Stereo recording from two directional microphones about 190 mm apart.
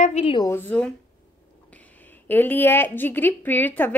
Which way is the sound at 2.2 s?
10° left (ahead or behind).